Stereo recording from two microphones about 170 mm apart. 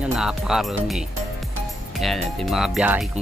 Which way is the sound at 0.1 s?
5° right (ahead or behind).